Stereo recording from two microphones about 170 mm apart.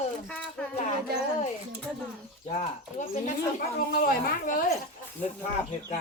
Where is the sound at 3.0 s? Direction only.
45° left (ahead or behind).